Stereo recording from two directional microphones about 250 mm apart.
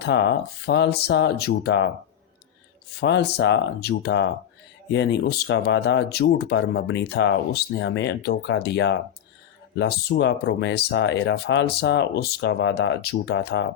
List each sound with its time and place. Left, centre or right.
0.0 s speech: left
3.0 s speech: left